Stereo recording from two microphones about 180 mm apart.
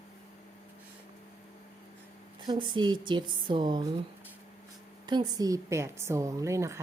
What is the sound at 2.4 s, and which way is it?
A woman's voice, 25° right (ahead or behind).